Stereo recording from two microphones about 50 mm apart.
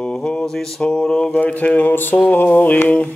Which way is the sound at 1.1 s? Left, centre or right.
Left.